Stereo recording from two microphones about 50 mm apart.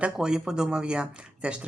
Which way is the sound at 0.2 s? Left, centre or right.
Centre.